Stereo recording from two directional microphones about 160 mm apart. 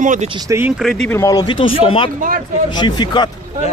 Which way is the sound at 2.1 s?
60° right (ahead or behind).